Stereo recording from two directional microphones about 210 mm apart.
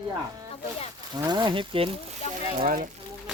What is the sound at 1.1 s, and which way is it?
Speech, 20° right (ahead or behind).